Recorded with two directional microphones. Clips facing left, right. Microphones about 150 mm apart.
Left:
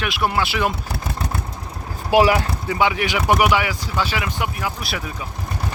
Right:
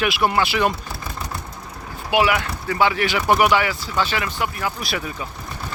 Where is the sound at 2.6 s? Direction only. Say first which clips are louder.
Right 2 dB; 15° left (ahead or behind).